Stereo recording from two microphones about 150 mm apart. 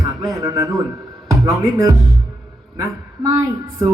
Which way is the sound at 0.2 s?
20° right (ahead or behind).